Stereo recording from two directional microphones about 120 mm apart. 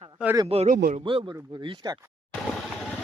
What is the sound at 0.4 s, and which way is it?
Speech, 60° right (ahead or behind).